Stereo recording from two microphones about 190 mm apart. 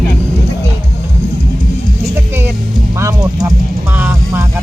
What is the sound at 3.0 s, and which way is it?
Speech, 20° right (ahead or behind).